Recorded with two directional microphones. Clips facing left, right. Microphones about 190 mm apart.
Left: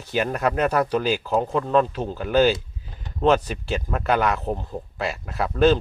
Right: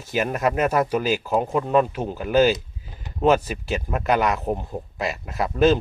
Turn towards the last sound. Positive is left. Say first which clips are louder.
# even
turn(degrees=-5)  # may be behind; listen again after turning